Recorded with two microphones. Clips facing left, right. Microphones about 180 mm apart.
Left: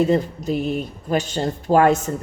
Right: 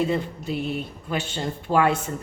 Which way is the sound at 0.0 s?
40° left (ahead or behind).